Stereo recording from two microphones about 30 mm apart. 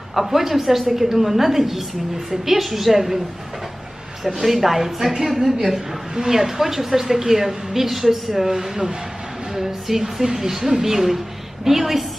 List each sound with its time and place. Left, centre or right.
0.1 s a woman's voice: centre
4.4 s a woman's voice: centre